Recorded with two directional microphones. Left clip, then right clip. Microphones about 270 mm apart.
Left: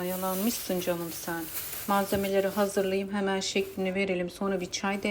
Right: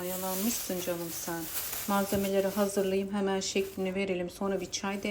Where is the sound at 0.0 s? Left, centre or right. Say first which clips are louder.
Left 3 dB; centre.